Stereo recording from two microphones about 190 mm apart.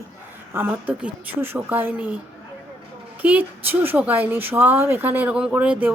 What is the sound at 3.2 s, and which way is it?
Speech, 10° right (ahead or behind).